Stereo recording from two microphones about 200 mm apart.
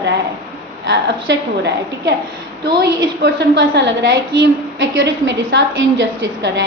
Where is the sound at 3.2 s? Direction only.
60° right (ahead or behind).